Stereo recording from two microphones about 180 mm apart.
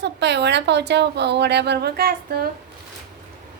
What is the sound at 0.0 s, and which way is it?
A woman's voice, 70° right (ahead or behind).